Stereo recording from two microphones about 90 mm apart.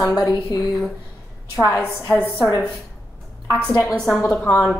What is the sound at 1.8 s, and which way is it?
Speech, 15° left (ahead or behind).